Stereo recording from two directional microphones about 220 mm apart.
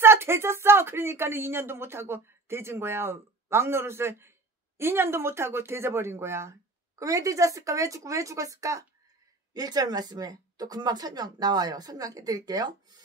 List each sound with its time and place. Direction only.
0.0 s speech: 10° right (ahead or behind)